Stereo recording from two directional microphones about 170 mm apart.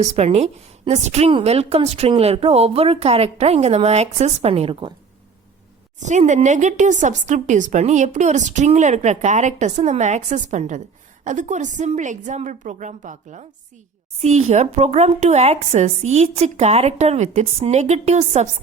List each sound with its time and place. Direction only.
0.0 s a woman's voice: 40° right (ahead or behind)
6.0 s a woman's voice: 45° right (ahead or behind)